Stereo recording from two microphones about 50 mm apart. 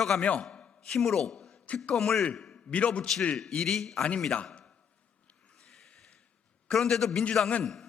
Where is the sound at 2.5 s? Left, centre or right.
Left.